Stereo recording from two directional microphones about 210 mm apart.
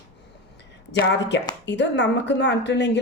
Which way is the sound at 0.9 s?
55° left (ahead or behind).